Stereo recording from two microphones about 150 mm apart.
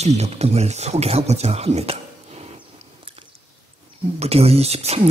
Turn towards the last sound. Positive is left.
turn(degrees=-45)  # may be behind; listen again after turning